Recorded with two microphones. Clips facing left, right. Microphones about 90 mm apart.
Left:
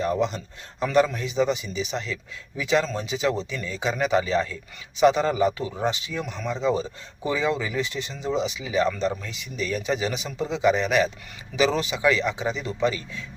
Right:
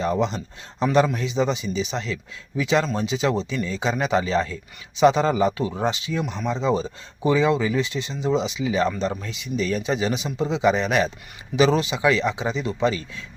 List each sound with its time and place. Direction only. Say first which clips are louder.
0.0 s speech: right 1 dB; 25° right (ahead or behind)